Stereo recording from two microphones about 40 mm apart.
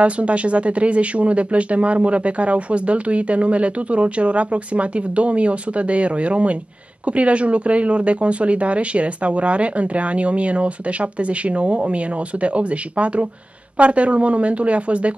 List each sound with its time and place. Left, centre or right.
0.0 s speech: right